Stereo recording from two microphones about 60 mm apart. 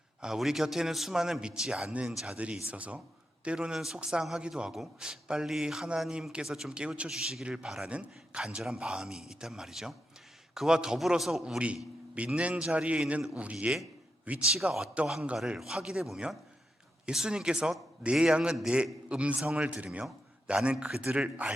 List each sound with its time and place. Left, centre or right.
0.2 s a man's voice: centre
1.9 s a man's voice: right
3.8 s a man's voice: centre
7.1 s a man's voice: centre
11.4 s a man's voice: centre
14.4 s a man's voice: centre